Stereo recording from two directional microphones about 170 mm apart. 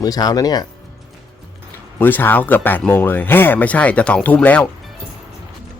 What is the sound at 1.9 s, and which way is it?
Speech, 10° left (ahead or behind).